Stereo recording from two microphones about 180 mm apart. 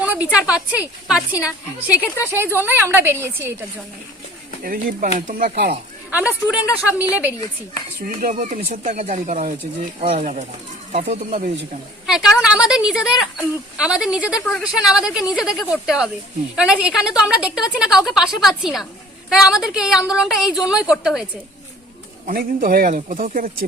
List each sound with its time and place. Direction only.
0.0 s a woman's voice: 10° right (ahead or behind)
4.6 s speech: 50° right (ahead or behind)
6.1 s a woman's voice: 10° right (ahead or behind)
8.0 s speech: 50° right (ahead or behind)
12.0 s speech: 5° right (ahead or behind)
22.3 s speech: 50° right (ahead or behind)